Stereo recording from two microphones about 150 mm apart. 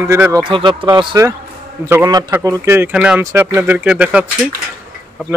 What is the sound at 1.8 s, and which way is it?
A man's voice, 20° right (ahead or behind).